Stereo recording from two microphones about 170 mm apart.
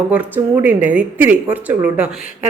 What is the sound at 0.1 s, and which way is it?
A woman's voice, 10° right (ahead or behind).